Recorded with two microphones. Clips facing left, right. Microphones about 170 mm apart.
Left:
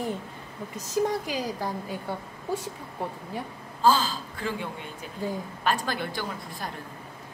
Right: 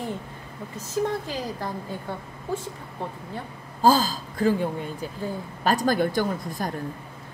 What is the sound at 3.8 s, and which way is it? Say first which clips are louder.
A woman's voice: right 3 dB; 40° right (ahead or behind).